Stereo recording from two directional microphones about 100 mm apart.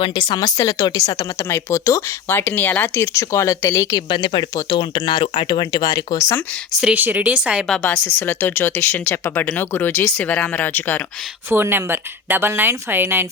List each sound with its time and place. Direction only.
0.0 s speech: 60° left (ahead or behind)
0.3 s speech: 40° left (ahead or behind)
1.4 s speech: 25° left (ahead or behind)
3.9 s speech: 55° left (ahead or behind)
6.1 s speech: 30° left (ahead or behind)
6.8 s speech: 20° right (ahead or behind)
7.8 s speech: 25° left (ahead or behind)
11.4 s a woman's voice: 20° right (ahead or behind)